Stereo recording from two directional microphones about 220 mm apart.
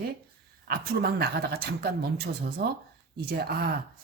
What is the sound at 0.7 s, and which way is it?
Speech, 45° right (ahead or behind).